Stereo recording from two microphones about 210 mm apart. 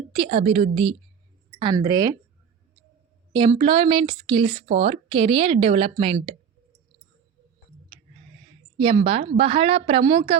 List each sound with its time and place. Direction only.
0.1 s a woman's voice: 30° right (ahead or behind)
3.3 s speech: 25° right (ahead or behind)
8.8 s speech: 25° right (ahead or behind)